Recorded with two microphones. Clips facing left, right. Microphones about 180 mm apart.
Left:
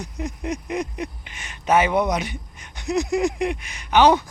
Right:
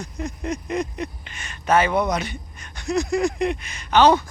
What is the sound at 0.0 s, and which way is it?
Speech, 15° left (ahead or behind).